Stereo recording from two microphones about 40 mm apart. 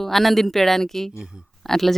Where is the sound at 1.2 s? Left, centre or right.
Centre.